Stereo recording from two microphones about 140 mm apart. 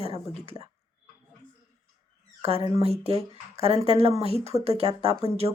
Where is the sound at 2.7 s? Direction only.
45° right (ahead or behind).